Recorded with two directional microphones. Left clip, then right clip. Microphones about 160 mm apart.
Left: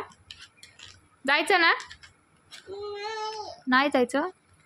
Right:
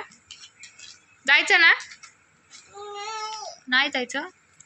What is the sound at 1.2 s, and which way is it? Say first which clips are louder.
Speech: right 5 dB; 35° left (ahead or behind).